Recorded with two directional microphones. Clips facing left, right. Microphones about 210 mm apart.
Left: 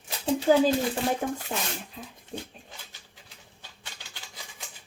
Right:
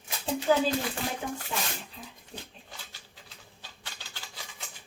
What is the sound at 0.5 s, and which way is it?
A woman's voice, 40° left (ahead or behind).